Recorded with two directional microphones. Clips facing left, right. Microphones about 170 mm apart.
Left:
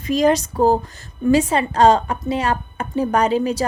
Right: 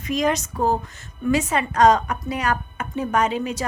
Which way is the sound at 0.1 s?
30° left (ahead or behind).